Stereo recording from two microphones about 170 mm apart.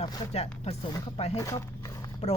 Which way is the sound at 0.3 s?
35° left (ahead or behind).